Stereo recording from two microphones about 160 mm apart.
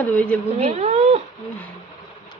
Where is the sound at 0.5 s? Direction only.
40° right (ahead or behind).